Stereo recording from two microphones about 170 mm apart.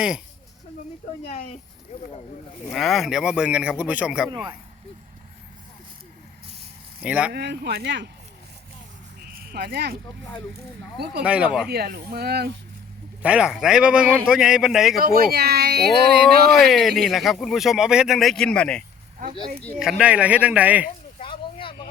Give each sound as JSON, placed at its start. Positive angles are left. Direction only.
{"t": 2.6, "sound": "speech", "side_deg": 0}
{"t": 7.0, "sound": "speech", "side_deg": -5}
{"t": 7.3, "sound": "speech", "side_deg": -75}
{"t": 9.2, "sound": "a sound", "side_deg": -65}
{"t": 10.9, "sound": "speech", "side_deg": -70}
{"t": 11.2, "sound": "speech", "side_deg": -5}
{"t": 11.7, "sound": "speech", "side_deg": -65}
{"t": 13.2, "sound": "speech", "side_deg": -5}
{"t": 14.9, "sound": "speech", "side_deg": -60}
{"t": 16.5, "sound": "speech", "side_deg": 0}
{"t": 19.8, "sound": "speech", "side_deg": -5}
{"t": 21.2, "sound": "a sound", "side_deg": 30}